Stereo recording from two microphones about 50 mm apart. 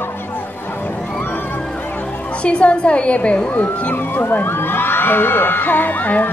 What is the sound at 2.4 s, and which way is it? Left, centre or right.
A woman's voice, left.